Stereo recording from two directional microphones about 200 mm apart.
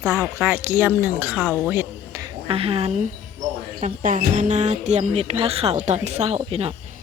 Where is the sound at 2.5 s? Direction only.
30° right (ahead or behind).